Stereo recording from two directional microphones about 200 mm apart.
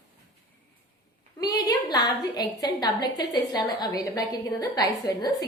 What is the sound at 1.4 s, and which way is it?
A woman's voice, 20° left (ahead or behind).